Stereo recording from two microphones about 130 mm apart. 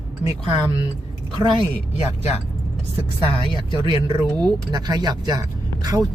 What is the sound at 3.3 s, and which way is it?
Speech, 40° left (ahead or behind).